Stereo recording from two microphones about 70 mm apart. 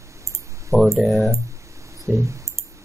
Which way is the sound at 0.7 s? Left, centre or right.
Centre.